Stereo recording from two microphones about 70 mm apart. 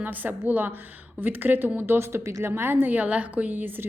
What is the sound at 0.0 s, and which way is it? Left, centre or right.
A woman's voice, right.